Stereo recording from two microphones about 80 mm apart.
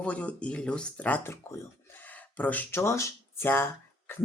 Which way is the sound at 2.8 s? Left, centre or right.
Left.